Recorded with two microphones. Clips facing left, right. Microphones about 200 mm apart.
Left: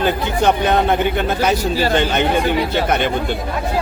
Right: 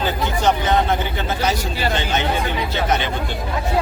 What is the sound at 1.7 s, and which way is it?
Speech, 40° left (ahead or behind).